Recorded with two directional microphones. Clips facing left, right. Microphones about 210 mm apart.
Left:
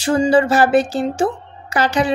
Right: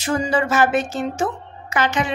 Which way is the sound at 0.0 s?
30° left (ahead or behind).